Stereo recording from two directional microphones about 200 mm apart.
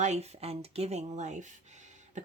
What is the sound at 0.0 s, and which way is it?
Speech, 35° right (ahead or behind).